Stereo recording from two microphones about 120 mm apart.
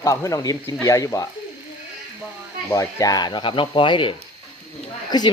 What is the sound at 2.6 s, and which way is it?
Speech, 30° left (ahead or behind).